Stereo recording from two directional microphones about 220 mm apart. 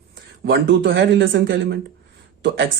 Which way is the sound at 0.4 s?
50° right (ahead or behind).